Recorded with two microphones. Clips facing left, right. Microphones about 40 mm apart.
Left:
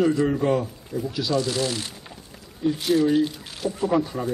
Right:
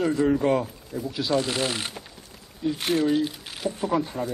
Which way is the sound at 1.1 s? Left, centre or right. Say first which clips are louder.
Even; right.